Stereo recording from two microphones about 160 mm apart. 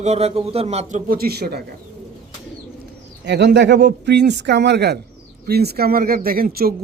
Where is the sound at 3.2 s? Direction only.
90° right.